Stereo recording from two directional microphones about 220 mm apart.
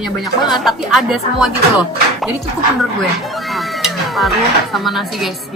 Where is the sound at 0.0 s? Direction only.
Centre (ahead or behind).